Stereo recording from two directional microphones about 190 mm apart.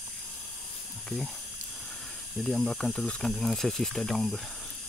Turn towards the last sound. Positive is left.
turn(degrees=0)  # may be behind; listen again after turning